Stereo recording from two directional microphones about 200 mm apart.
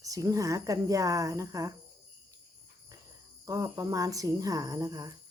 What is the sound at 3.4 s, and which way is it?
Speech, 15° right (ahead or behind).